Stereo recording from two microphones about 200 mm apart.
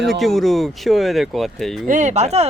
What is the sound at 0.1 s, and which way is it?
Speech, centre (ahead or behind).